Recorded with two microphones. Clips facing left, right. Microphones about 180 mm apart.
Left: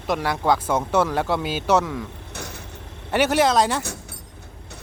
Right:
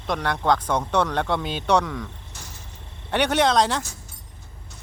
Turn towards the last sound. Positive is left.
turn(degrees=5)  # may be behind; listen again after turning